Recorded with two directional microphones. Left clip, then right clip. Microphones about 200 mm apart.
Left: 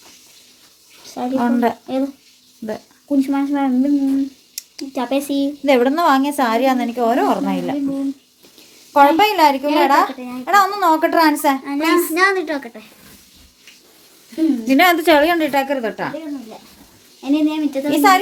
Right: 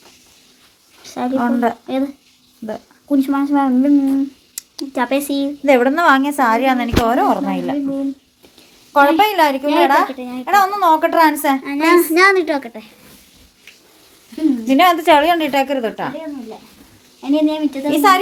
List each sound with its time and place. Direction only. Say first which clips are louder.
1.0 s a sound: right 2 dB; 25° right (ahead or behind)
1.4 s a woman's voice: even; 10° left (ahead or behind)
3.2 s speech: right 2 dB; 20° right (ahead or behind)
5.6 s a woman's voice: right 2 dB; centre (ahead or behind)
8.9 s a woman's voice: even; centre (ahead or behind)
10.1 s speech: right 2 dB; 30° right (ahead or behind)
10.4 s a woman's voice: right 1 dB; centre (ahead or behind)
11.6 s a woman's voice: right 4 dB; 40° right (ahead or behind)
14.6 s a woman's voice: right 1 dB; centre (ahead or behind)
17.3 s a woman's voice: right 1 dB; 10° right (ahead or behind)